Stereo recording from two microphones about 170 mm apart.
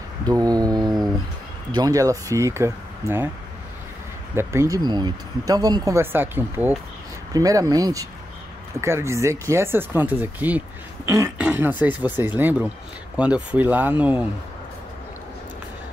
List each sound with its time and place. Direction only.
0.3 s mantra: 20° right (ahead or behind)
1.7 s speech: 20° right (ahead or behind)
4.4 s speech: 15° right (ahead or behind)